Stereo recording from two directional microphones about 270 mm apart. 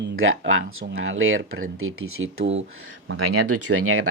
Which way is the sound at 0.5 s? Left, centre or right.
Right.